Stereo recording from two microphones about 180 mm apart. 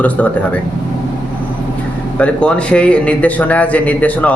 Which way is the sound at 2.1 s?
5° left (ahead or behind).